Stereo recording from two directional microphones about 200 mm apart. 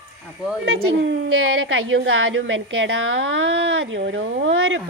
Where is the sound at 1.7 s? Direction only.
70° right (ahead or behind).